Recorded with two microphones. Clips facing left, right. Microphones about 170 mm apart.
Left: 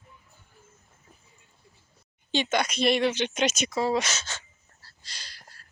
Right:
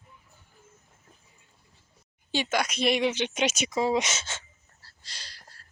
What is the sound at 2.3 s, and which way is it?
Speech, 5° right (ahead or behind).